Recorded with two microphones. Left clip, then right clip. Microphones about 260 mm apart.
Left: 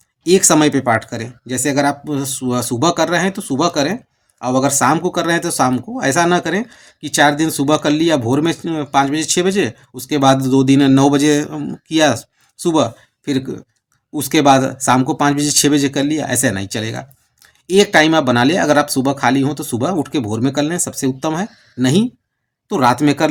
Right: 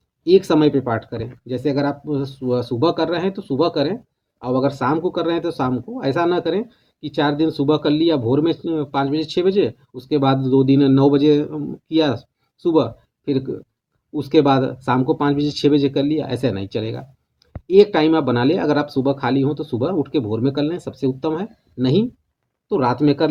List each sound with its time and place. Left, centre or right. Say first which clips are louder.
0.3 s speech: left 2 dB; left